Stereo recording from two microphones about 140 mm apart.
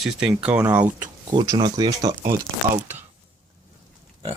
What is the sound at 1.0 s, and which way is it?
Speech, 25° right (ahead or behind).